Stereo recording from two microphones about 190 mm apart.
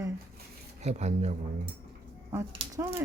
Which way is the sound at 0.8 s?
35° right (ahead or behind).